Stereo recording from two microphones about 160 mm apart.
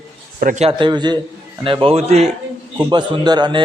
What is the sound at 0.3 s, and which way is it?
Speech, 55° right (ahead or behind).